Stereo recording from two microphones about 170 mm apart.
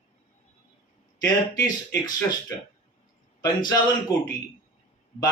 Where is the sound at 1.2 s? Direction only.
20° left (ahead or behind).